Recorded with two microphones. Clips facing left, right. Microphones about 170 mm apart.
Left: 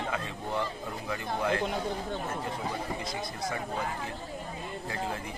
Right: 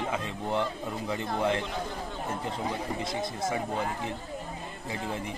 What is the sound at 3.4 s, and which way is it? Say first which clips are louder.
Speech: right 4 dB; 25° right (ahead or behind).